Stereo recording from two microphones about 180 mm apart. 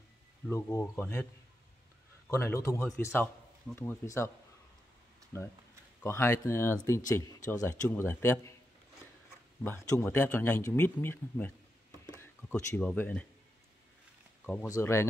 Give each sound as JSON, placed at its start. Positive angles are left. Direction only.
{"t": 0.5, "sound": "speech", "side_deg": 20}
{"t": 0.9, "sound": "speech", "side_deg": 10}
{"t": 2.3, "sound": "speech", "side_deg": 15}
{"t": 5.3, "sound": "speech", "side_deg": 15}
{"t": 9.6, "sound": "speech", "side_deg": 10}
{"t": 14.4, "sound": "speech", "side_deg": 10}